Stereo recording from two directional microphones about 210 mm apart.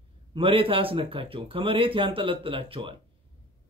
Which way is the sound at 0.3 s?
25° right (ahead or behind).